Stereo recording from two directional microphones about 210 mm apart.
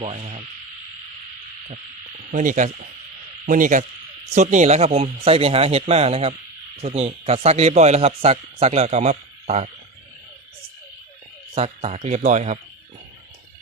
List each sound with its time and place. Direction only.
0.0 s a man's voice: 30° right (ahead or behind)
2.3 s a man's voice: 40° right (ahead or behind)
11.5 s a man's voice: 30° right (ahead or behind)